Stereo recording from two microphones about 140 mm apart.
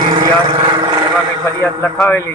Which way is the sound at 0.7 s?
35° right (ahead or behind).